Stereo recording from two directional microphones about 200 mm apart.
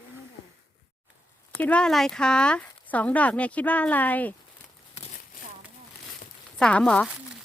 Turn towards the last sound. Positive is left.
turn(degrees=5)  # may be behind; listen again after turning